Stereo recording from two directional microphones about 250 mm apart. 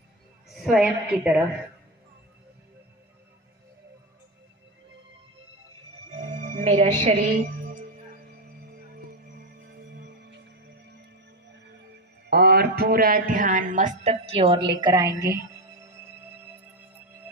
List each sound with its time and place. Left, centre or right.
0.5 s a woman's voice: centre
6.2 s music: right
9.4 s music: right
12.3 s speech: right; by 15.9 s centre